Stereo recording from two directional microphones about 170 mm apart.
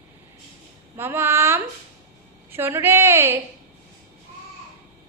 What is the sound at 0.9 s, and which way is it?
A woman's voice, 15° right (ahead or behind).